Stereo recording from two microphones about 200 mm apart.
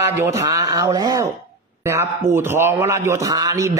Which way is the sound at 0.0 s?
15° right (ahead or behind).